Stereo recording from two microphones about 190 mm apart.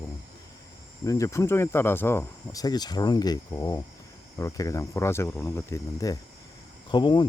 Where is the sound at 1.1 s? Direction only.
15° left (ahead or behind).